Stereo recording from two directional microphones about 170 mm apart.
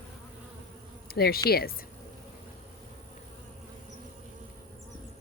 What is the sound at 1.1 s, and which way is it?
Speech, 65° left (ahead or behind).